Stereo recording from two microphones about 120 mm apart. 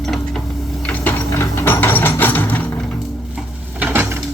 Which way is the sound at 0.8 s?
15° left (ahead or behind).